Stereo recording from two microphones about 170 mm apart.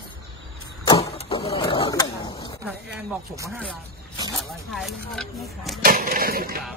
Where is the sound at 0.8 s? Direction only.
35° left (ahead or behind).